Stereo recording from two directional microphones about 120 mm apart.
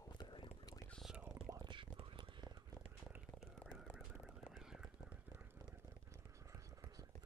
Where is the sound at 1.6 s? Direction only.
40° right (ahead or behind).